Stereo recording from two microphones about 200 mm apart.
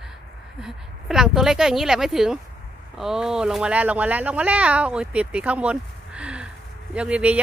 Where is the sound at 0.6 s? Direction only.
Centre (ahead or behind).